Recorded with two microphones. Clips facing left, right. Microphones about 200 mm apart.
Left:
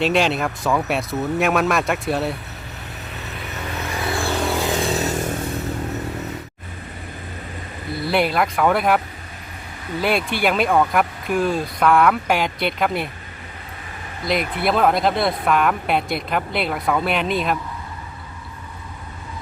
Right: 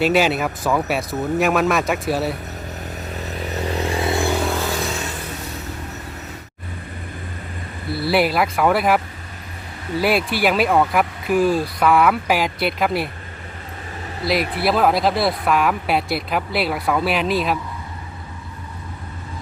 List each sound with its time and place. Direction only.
0.0 s speech: 5° right (ahead or behind)
3.2 s vehicle: 35° right (ahead or behind)
4.4 s a sound: 10° left (ahead or behind)
4.9 s a sound: 45° left (ahead or behind)
7.9 s speech: 5° right (ahead or behind)
10.0 s speech: 5° right (ahead or behind)
14.3 s speech: 5° right (ahead or behind)